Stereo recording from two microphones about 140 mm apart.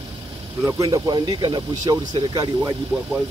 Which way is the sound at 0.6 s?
25° right (ahead or behind).